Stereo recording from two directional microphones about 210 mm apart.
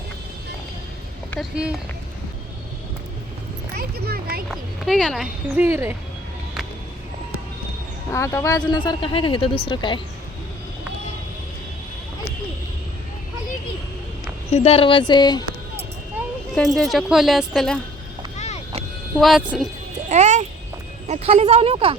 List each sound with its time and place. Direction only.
1.3 s speech: centre (ahead or behind)
3.8 s speech: 45° right (ahead or behind)
4.4 s speech: centre (ahead or behind)
5.6 s speech: 10° right (ahead or behind)
8.1 s speech: 15° left (ahead or behind)
14.5 s speech: 30° left (ahead or behind)
16.6 s speech: centre (ahead or behind)
18.3 s vehicle: 30° left (ahead or behind)
19.2 s speech: centre (ahead or behind)
20.1 s a sound: 35° right (ahead or behind)
21.1 s speech: 30° right (ahead or behind)